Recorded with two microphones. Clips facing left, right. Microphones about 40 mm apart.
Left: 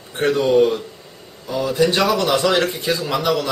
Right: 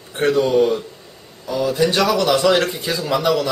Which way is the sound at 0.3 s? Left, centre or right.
Centre.